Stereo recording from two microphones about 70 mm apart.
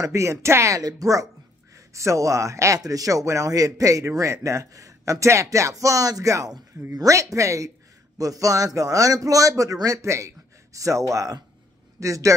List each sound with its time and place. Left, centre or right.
0.0 s speech: right
0.7 s a man's voice: right